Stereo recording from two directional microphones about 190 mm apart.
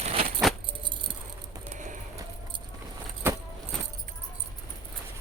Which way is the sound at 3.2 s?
10° right (ahead or behind).